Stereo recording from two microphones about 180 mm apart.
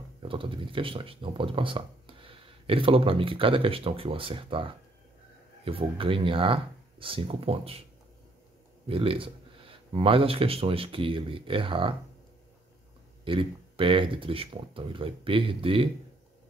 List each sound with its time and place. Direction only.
0.2 s speech: 30° right (ahead or behind)
8.8 s speech: 30° right (ahead or behind)
13.2 s speech: 30° right (ahead or behind)